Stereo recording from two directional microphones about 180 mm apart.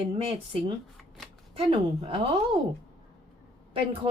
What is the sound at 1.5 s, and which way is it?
Speech, 30° right (ahead or behind).